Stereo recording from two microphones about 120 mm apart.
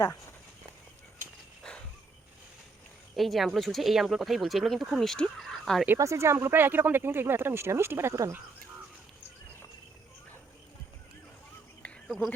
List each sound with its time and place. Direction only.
3.2 s speech: centre (ahead or behind)
6.0 s speech: 25° right (ahead or behind)
11.8 s a sound: 5° left (ahead or behind)